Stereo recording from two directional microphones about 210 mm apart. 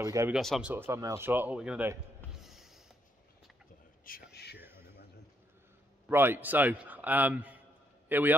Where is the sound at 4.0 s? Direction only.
45° left (ahead or behind).